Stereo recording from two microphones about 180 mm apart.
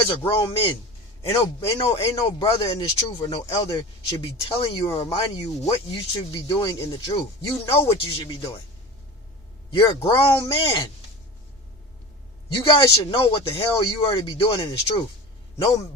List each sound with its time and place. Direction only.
0.3 s speech: 30° left (ahead or behind)
5.1 s speech: 35° left (ahead or behind)
9.7 s speech: 30° left (ahead or behind)
12.6 s a man's voice: 25° left (ahead or behind)